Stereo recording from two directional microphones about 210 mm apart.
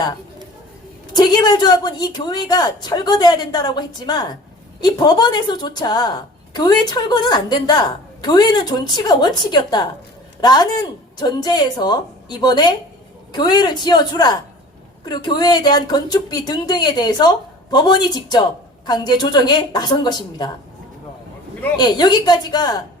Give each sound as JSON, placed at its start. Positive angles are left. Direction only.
{"t": 1.1, "sound": "a woman's voice", "side_deg": 20}
{"t": 21.8, "sound": "a woman's voice", "side_deg": 20}